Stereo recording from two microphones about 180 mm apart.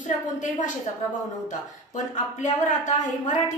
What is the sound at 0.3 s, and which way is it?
Speech, 45° left (ahead or behind).